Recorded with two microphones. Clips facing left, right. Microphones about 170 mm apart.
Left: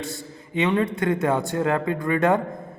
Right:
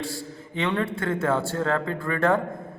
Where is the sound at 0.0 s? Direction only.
20° left (ahead or behind).